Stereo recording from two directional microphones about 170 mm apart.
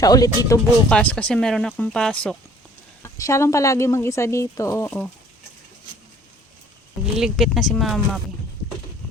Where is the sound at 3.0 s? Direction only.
20° left (ahead or behind).